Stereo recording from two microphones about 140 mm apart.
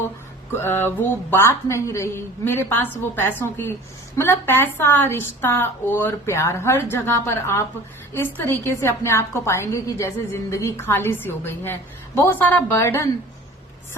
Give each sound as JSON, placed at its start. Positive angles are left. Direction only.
{"t": 0.6, "sound": "a woman's voice", "side_deg": 15}